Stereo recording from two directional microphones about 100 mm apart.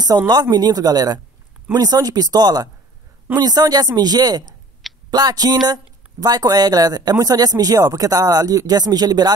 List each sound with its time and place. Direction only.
0.3 s a woman's voice: 40° right (ahead or behind)